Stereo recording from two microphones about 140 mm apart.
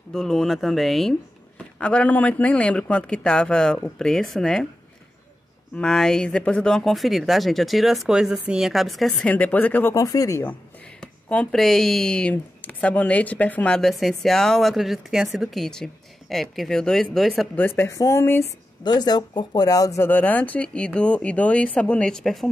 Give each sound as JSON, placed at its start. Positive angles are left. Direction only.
{"t": 0.1, "sound": "speech", "side_deg": 5}
{"t": 5.8, "sound": "speech", "side_deg": 5}
{"t": 9.9, "sound": "speech", "side_deg": 25}
{"t": 11.0, "sound": "speech", "side_deg": 5}
{"t": 17.6, "sound": "speech", "side_deg": 15}
{"t": 18.9, "sound": "speech", "side_deg": 30}